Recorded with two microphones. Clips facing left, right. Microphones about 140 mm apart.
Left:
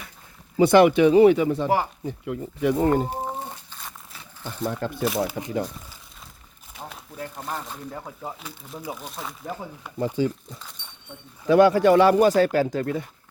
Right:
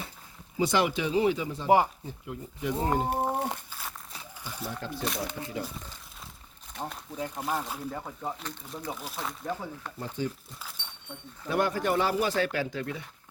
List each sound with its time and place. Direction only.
0.5 s speech: 60° left (ahead or behind)
3.1 s a sound: 65° right (ahead or behind)
3.7 s crumpling: 5° right (ahead or behind)
4.4 s speech: 55° left (ahead or behind)
5.0 s speech: 5° left (ahead or behind)
6.7 s a sound: centre (ahead or behind)
7.2 s speech: 5° right (ahead or behind)
10.2 s speech: 90° left
11.4 s speech: 90° left; by 12.2 s 70° left (ahead or behind)
12.2 s speech: 40° left (ahead or behind)